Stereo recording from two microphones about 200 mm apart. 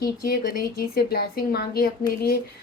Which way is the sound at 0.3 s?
45° left (ahead or behind).